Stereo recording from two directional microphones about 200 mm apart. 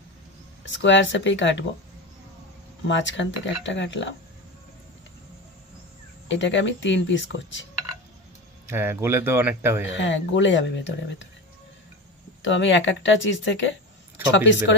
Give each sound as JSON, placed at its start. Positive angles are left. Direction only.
{"t": 0.7, "sound": "speech", "side_deg": 65}
{"t": 2.9, "sound": "speech", "side_deg": 65}
{"t": 6.2, "sound": "speech", "side_deg": 65}
{"t": 8.6, "sound": "speech", "side_deg": -10}
{"t": 9.8, "sound": "speech", "side_deg": 65}
{"t": 12.4, "sound": "speech", "side_deg": 65}